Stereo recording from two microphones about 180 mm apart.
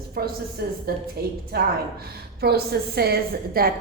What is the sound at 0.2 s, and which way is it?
A woman's voice, 55° right (ahead or behind).